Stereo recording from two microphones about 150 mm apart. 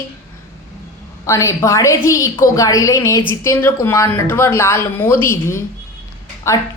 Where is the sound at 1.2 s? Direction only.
20° left (ahead or behind).